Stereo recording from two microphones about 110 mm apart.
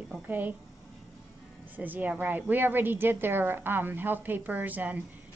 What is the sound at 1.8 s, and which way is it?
A woman's voice, 15° right (ahead or behind).